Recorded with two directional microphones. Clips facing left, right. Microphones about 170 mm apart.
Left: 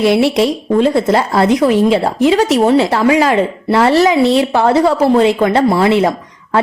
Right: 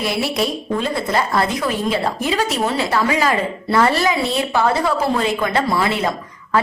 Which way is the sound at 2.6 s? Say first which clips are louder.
Left 8 dB; 25° left (ahead or behind).